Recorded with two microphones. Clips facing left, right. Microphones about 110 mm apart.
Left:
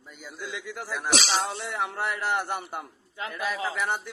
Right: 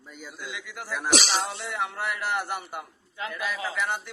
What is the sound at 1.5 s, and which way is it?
Speech, 35° left (ahead or behind).